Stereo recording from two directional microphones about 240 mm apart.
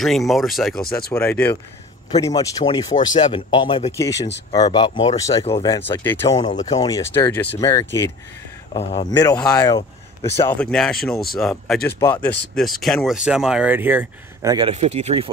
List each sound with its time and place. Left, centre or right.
0.0 s speech: centre
6.3 s speech: left
6.8 s speech: centre
8.7 s speech: left; by 11.8 s centre
12.0 s speech: centre
12.5 s speech: centre
14.7 s speech: right